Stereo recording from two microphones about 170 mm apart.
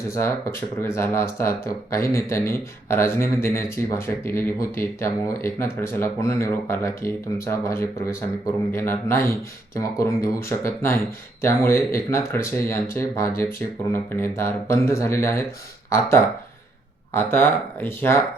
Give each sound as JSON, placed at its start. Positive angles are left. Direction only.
{"t": 0.1, "sound": "speech", "side_deg": 15}